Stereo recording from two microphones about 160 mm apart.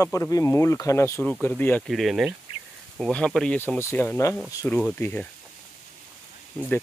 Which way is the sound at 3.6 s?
15° left (ahead or behind).